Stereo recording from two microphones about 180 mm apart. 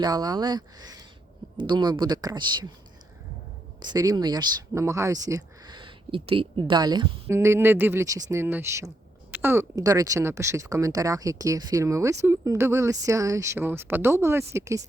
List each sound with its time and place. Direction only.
0.0 s speech: 20° right (ahead or behind)
3.8 s speech: 20° right (ahead or behind)